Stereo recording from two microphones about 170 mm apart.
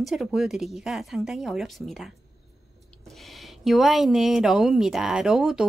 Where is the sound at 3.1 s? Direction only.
Centre (ahead or behind).